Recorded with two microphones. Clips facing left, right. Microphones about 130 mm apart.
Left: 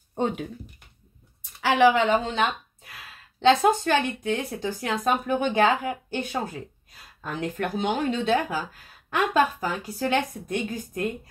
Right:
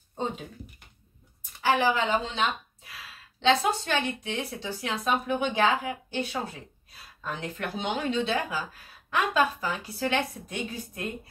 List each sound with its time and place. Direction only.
0.1 s speech: 65° left (ahead or behind)
1.6 s speech: 80° left; by 11.1 s 45° left (ahead or behind)